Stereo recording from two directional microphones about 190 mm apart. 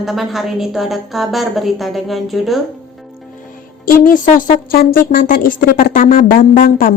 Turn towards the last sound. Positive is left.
turn(degrees=45)  # may be behind; listen again after turning